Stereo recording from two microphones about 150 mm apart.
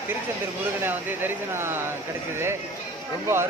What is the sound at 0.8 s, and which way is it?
Speech, 15° right (ahead or behind).